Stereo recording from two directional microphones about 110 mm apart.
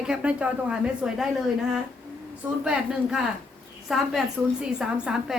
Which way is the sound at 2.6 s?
5° right (ahead or behind).